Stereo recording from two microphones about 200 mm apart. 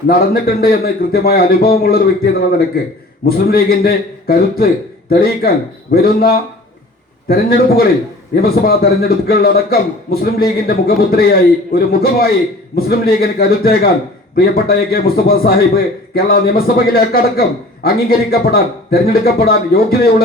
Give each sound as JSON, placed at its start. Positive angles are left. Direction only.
{"t": 0.1, "sound": "speech", "side_deg": 50}